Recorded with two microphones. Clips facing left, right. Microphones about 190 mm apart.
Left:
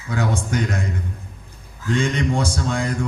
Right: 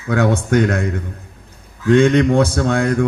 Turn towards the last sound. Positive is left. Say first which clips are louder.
# right 7 dB
turn(degrees=-60)  # may be behind; listen again after turning